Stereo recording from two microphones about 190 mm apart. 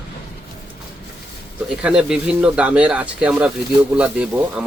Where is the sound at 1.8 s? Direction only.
5° right (ahead or behind).